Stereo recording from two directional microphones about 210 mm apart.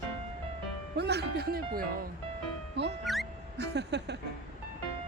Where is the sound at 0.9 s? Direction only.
50° right (ahead or behind).